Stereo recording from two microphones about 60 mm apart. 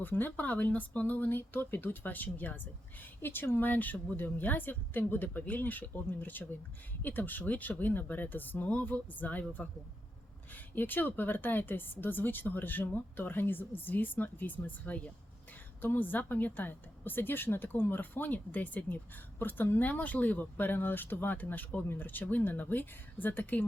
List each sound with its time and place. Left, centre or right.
0.0 s speech: left